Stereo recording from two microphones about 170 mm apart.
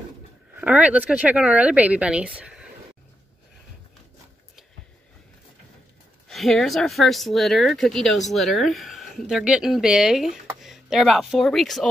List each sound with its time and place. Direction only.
0.6 s speech: 10° right (ahead or behind)
6.2 s speech: centre (ahead or behind)